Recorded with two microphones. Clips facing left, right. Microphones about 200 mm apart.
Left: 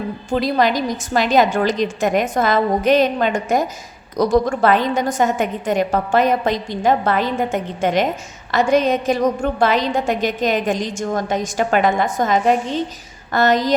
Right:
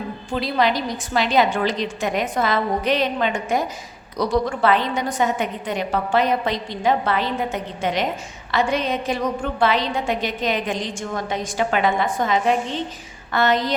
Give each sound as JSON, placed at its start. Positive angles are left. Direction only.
{"t": 0.3, "sound": "a woman's voice", "side_deg": 45}